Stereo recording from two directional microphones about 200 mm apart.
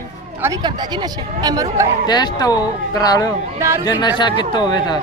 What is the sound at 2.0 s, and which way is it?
Speech, 20° left (ahead or behind).